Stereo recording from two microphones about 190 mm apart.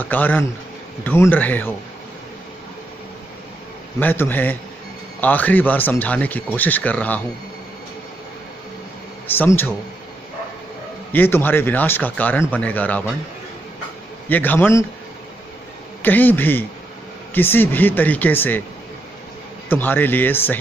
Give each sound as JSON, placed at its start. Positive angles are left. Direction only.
{"t": 0.0, "sound": "speech", "side_deg": 10}
{"t": 4.0, "sound": "speech", "side_deg": 10}
{"t": 9.4, "sound": "speech", "side_deg": 10}
{"t": 11.1, "sound": "speech", "side_deg": 10}
{"t": 14.3, "sound": "speech", "side_deg": 10}
{"t": 16.0, "sound": "speech", "side_deg": 10}
{"t": 19.7, "sound": "speech", "side_deg": 10}